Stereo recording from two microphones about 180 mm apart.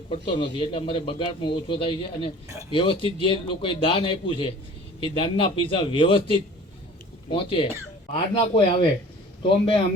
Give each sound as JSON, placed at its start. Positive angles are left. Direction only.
{"t": 0.1, "sound": "a man's voice", "side_deg": 30}